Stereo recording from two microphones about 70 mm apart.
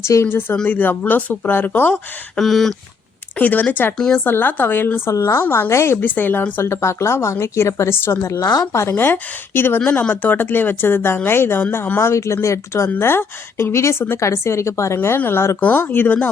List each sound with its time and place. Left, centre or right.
0.0 s speech: left
0.7 s speech: left
2.3 s a sound: centre
3.3 s speech: left
3.9 s speech: centre
4.2 s speech: left
6.0 s speech: left
8.2 s a woman's voice: left
8.9 s speech: left
14.9 s speech: left